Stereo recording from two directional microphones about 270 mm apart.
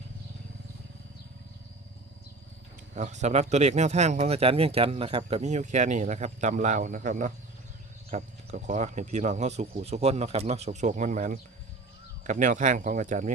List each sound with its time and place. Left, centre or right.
2.9 s speech: right